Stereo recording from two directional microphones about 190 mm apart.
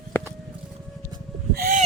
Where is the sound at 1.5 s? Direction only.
50° right (ahead or behind).